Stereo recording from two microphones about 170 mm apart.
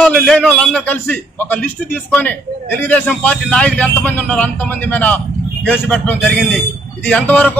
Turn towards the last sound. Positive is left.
turn(degrees=5)  # may be behind; listen again after turning